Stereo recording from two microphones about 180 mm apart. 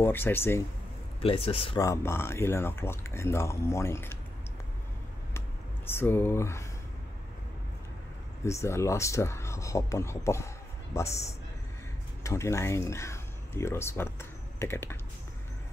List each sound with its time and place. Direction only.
0.0 s speech: 10° left (ahead or behind)
1.2 s speech: 30° left (ahead or behind)
1.8 s speech: 15° left (ahead or behind)
5.9 s speech: 10° left (ahead or behind)
8.5 s speech: 15° left (ahead or behind)
12.2 s speech: 15° left (ahead or behind)